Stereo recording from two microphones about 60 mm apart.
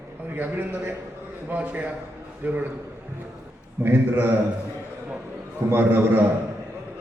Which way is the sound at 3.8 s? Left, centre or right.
Right.